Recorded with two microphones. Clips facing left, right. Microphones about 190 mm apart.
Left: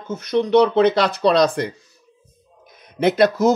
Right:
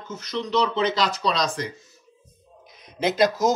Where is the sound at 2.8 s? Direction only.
60° left (ahead or behind).